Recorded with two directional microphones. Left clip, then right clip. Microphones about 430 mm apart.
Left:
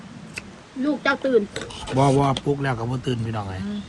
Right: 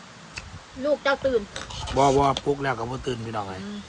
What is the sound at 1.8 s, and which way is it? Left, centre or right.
Speech, centre.